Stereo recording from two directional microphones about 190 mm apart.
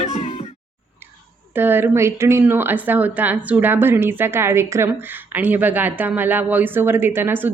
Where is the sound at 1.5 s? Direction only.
10° right (ahead or behind).